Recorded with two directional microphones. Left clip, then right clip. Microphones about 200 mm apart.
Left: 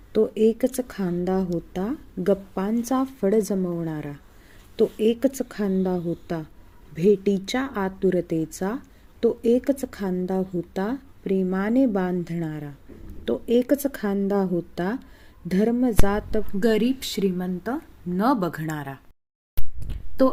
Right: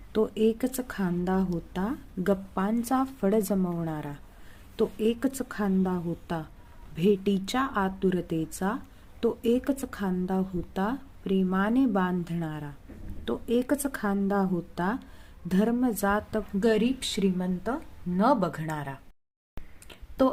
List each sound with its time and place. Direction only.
0.1 s a woman's voice: 5° left (ahead or behind)
20.2 s a woman's voice: 10° left (ahead or behind)